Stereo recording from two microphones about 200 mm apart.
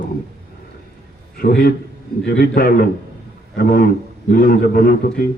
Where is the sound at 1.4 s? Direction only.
50° left (ahead or behind).